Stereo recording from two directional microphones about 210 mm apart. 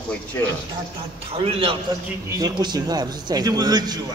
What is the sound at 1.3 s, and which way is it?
A man's voice, 25° right (ahead or behind).